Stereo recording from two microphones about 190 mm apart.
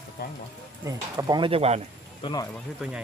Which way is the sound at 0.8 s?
20° right (ahead or behind).